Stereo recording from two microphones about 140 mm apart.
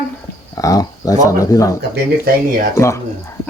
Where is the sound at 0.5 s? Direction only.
25° left (ahead or behind).